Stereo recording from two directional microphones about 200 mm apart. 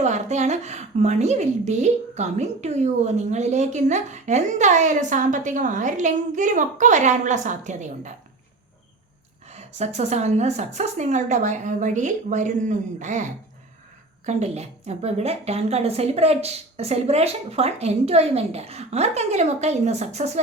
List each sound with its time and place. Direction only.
0.0 s a woman's voice: 35° right (ahead or behind)
9.5 s a woman's voice: 35° right (ahead or behind)
14.3 s a woman's voice: 35° right (ahead or behind)